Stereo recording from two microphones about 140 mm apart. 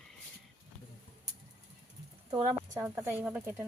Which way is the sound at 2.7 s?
20° right (ahead or behind).